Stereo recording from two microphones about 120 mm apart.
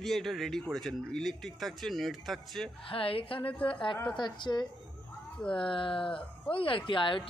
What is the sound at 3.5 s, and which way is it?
Speech, 10° left (ahead or behind).